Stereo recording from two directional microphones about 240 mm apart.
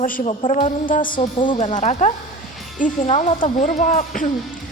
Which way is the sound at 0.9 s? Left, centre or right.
Left.